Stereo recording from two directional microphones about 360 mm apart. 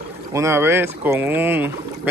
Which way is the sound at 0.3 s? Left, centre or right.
Centre.